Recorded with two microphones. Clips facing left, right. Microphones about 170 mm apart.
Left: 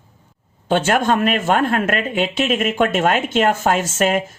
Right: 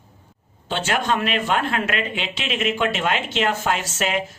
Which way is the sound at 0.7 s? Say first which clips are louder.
Left 6 dB; 50° left (ahead or behind).